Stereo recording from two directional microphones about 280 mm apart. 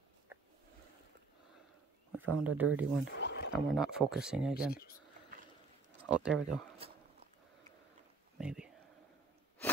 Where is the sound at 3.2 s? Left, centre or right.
Left.